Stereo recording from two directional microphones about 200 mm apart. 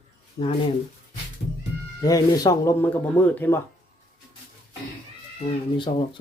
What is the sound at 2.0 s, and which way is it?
Speech, 20° left (ahead or behind).